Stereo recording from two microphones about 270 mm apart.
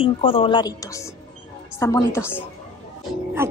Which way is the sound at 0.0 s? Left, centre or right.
Centre.